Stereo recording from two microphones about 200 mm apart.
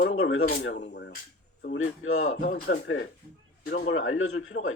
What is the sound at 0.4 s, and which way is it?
Speech, 50° left (ahead or behind).